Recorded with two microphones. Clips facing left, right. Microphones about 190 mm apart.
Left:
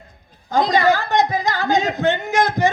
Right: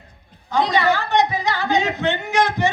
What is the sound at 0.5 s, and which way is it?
A man's voice, 40° left (ahead or behind).